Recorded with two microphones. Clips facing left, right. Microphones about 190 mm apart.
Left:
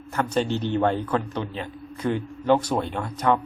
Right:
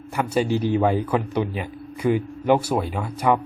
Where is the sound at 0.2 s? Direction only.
10° right (ahead or behind).